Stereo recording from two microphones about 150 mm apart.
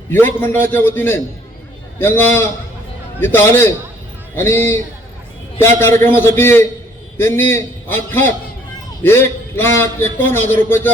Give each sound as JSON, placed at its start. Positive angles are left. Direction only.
{"t": 0.1, "sound": "a man's voice", "side_deg": 15}